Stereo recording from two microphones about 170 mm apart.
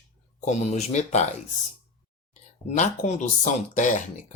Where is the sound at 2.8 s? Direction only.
45° left (ahead or behind).